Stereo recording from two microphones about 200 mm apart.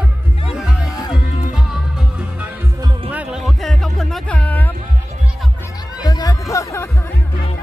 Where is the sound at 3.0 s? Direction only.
5° right (ahead or behind).